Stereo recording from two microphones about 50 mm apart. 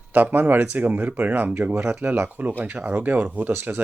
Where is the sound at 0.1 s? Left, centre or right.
Right.